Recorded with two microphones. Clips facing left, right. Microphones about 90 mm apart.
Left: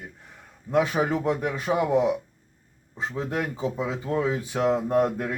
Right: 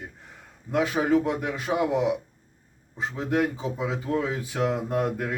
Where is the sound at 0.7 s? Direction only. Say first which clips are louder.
Even; 30° left (ahead or behind).